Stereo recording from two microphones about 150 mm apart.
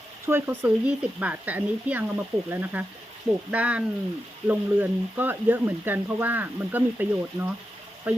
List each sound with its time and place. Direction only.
0.3 s speech: 15° right (ahead or behind)